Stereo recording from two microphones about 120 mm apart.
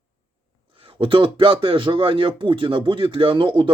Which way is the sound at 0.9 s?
45° right (ahead or behind).